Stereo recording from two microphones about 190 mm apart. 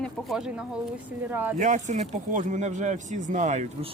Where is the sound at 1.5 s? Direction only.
40° right (ahead or behind).